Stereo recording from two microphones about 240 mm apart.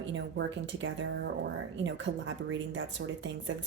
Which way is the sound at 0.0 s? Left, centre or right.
Right.